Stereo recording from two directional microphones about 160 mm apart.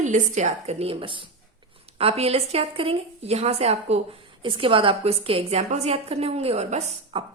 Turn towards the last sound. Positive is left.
turn(degrees=-45)  # may be behind; listen again after turning